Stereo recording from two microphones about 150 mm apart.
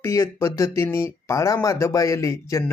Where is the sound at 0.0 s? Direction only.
15° left (ahead or behind).